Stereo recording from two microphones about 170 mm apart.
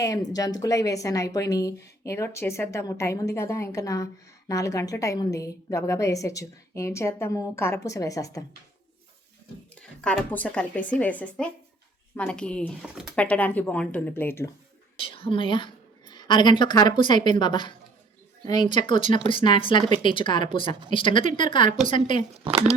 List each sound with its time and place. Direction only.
0.0 s a woman's voice: 20° left (ahead or behind)
10.0 s speech: 10° left (ahead or behind)
12.8 s speech: 5° right (ahead or behind)
13.1 s speech: 10° left (ahead or behind)
14.9 s a woman's voice: 35° left (ahead or behind)
22.4 s speech: 35° right (ahead or behind)